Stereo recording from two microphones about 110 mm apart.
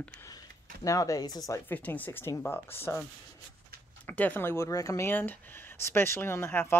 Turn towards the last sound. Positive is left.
turn(degrees=20)  # may be behind; listen again after turning